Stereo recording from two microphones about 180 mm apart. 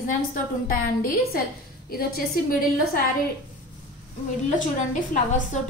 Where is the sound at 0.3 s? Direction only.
50° left (ahead or behind).